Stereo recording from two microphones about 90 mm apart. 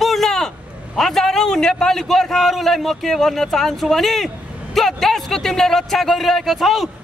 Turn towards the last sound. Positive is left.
turn(degrees=0)  # may be behind; listen again after turning